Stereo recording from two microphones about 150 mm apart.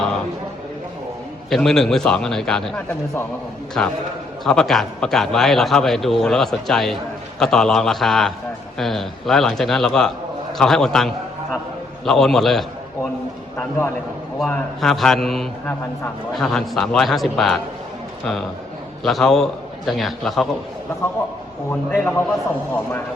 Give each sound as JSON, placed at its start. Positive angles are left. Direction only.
{"t": 1.5, "sound": "a man's voice", "side_deg": 0}
{"t": 13.6, "sound": "a man's voice", "side_deg": 15}
{"t": 14.3, "sound": "a man's voice", "side_deg": 5}
{"t": 19.0, "sound": "a man's voice", "side_deg": 0}
{"t": 21.7, "sound": "a man's voice", "side_deg": 15}